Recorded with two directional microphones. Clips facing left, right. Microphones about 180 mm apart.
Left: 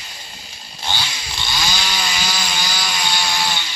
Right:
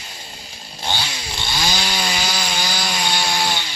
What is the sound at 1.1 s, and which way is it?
Chainsaw, 30° right (ahead or behind).